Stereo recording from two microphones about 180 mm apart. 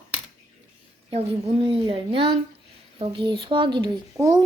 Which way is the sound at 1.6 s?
30° right (ahead or behind).